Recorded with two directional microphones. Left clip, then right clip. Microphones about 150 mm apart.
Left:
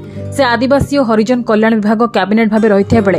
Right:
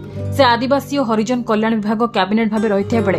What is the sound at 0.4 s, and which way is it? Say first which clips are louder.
A woman's voice: left 2 dB; 30° left (ahead or behind).